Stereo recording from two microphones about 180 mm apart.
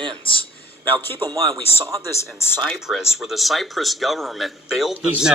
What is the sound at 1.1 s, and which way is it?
Speech, 25° right (ahead or behind).